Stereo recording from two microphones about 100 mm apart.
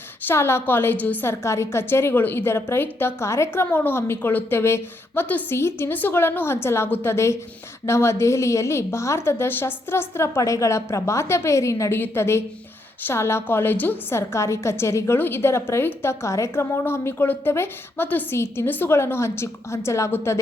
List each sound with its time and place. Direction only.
0.3 s a woman's voice: 25° left (ahead or behind)